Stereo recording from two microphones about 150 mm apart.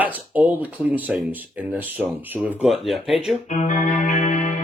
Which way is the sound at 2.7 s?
Centre (ahead or behind).